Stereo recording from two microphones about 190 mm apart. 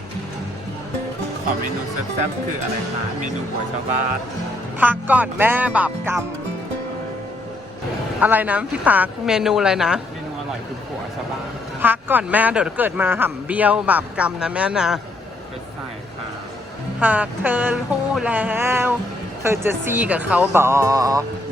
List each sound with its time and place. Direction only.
4.8 s speech: 10° right (ahead or behind)
8.2 s a woman's voice: 10° right (ahead or behind)
11.8 s speech: 10° right (ahead or behind)
17.0 s speech: 10° right (ahead or behind)